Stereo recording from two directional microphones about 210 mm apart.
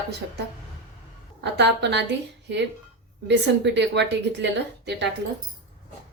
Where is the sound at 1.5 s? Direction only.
55° right (ahead or behind).